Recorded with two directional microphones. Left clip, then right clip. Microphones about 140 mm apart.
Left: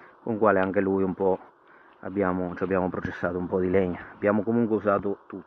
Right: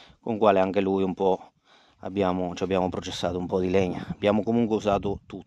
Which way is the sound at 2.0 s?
45° right (ahead or behind).